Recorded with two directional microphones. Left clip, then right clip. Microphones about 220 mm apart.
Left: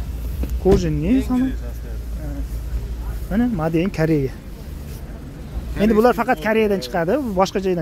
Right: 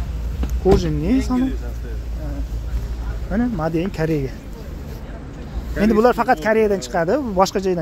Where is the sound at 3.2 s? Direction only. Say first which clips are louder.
Even; 20° left (ahead or behind).